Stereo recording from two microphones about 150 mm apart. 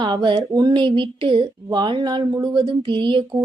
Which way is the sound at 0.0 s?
30° right (ahead or behind).